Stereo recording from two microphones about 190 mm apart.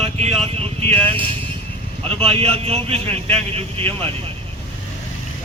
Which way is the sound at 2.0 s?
30° right (ahead or behind).